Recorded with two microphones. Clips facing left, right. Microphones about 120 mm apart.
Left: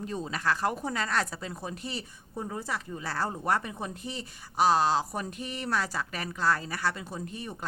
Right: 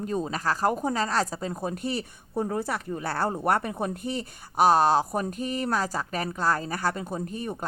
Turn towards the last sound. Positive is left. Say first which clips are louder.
# right 6 dB
turn(degrees=-45)  # may be behind; listen again after turning